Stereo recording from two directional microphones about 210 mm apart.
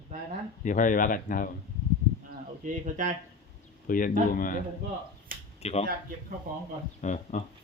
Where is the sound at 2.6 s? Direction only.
35° right (ahead or behind).